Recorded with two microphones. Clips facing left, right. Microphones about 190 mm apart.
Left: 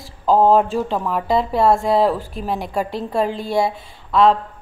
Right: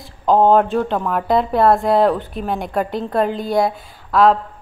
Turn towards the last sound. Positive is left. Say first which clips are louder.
# right 1 dB
turn(degrees=0)  # may be behind; listen again after turning